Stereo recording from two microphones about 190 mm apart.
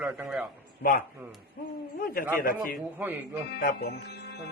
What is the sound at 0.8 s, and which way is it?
A man's voice, 50° left (ahead or behind).